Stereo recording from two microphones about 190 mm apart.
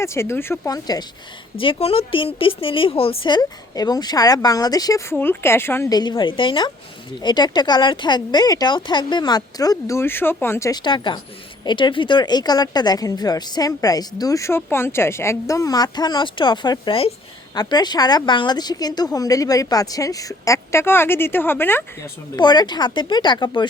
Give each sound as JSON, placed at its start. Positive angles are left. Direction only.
{"t": 0.0, "sound": "a woman's voice", "side_deg": 15}
{"t": 22.4, "sound": "speech", "side_deg": 25}